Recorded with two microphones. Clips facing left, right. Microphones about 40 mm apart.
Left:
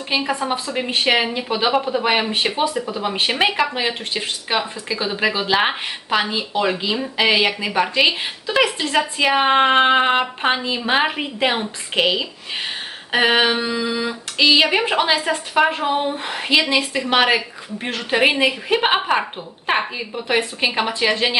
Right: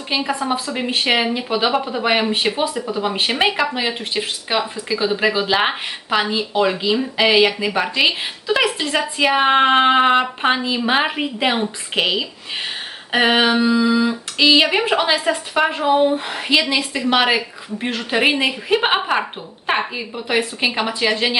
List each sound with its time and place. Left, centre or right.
0.1 s speech: centre